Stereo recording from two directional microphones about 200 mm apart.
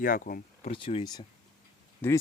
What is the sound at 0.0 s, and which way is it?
Speech, 45° left (ahead or behind).